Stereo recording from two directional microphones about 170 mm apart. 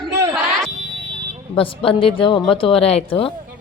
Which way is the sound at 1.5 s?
35° left (ahead or behind).